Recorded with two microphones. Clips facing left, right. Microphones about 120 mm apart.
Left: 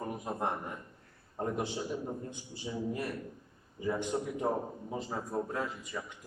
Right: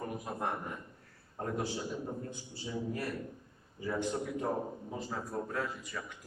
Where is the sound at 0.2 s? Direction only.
20° left (ahead or behind).